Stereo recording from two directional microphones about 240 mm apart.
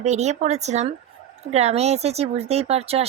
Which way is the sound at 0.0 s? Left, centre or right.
Right.